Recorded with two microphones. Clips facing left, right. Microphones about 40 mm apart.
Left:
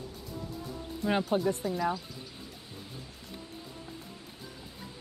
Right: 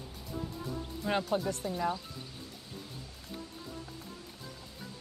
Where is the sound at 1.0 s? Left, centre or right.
Centre.